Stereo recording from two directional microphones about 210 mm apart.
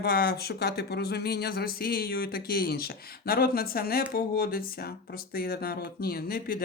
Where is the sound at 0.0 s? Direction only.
50° left (ahead or behind).